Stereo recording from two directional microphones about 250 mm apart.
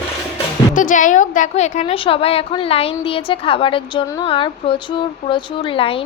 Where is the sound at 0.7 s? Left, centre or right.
Left.